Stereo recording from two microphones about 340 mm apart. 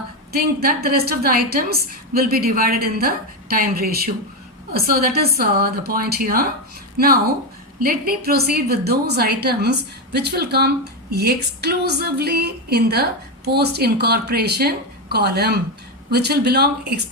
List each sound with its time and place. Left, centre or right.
0.3 s speech: right